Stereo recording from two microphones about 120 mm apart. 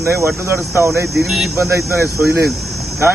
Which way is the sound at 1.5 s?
25° right (ahead or behind).